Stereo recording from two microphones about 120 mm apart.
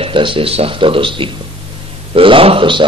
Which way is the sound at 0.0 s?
45° right (ahead or behind).